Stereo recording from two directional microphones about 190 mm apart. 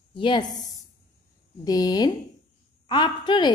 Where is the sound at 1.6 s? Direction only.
20° left (ahead or behind).